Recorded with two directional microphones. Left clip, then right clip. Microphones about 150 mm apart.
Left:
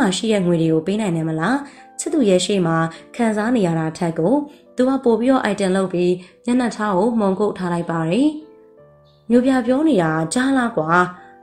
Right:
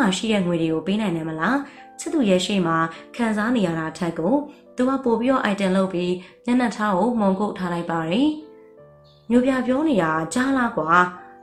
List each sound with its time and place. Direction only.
0.0 s speech: 45° left (ahead or behind)
9.3 s speech: 40° left (ahead or behind)